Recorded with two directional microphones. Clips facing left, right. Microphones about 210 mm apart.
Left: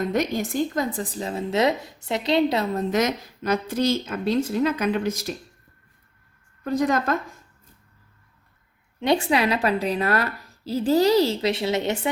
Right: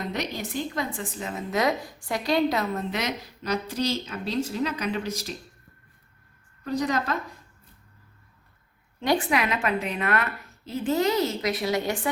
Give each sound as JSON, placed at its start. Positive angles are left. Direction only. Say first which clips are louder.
{"t": 0.0, "sound": "a woman's voice", "louder": "left 7 dB", "side_deg": 50}
{"t": 2.9, "sound": "a woman's voice", "louder": "left 7 dB", "side_deg": 45}
{"t": 6.7, "sound": "a woman's voice", "louder": "left 4 dB", "side_deg": 50}
{"t": 9.0, "sound": "a woman's voice", "louder": "left 3 dB", "side_deg": 25}